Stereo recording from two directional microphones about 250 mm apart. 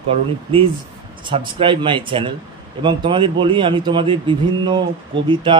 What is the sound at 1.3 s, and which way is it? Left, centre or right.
Speech, centre.